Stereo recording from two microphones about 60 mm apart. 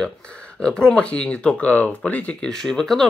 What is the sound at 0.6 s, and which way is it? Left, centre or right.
Speech, centre.